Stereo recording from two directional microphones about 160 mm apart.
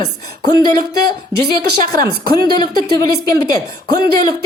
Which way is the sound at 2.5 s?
25° left (ahead or behind).